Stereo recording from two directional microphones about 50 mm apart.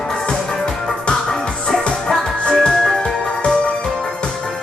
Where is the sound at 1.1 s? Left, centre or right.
Centre.